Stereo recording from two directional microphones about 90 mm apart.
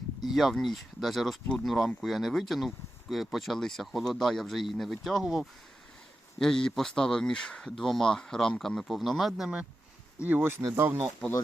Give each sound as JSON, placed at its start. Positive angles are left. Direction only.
{"t": 0.3, "sound": "speech", "side_deg": 0}
{"t": 10.2, "sound": "speech", "side_deg": -20}